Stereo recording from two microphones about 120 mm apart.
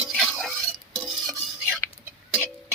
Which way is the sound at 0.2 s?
Centre (ahead or behind).